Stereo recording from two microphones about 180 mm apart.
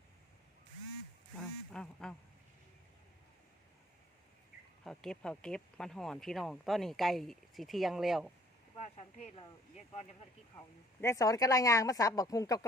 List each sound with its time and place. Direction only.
1.4 s quack: 5° left (ahead or behind)
4.8 s speech: 5° left (ahead or behind)
11.0 s speech: 20° left (ahead or behind)